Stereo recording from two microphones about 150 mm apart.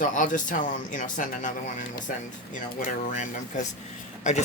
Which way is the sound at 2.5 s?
55° left (ahead or behind).